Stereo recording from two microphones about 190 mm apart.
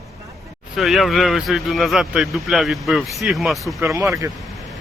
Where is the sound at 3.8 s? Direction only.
15° right (ahead or behind).